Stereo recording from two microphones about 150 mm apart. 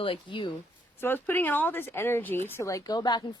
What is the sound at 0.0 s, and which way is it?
Speech, 35° left (ahead or behind).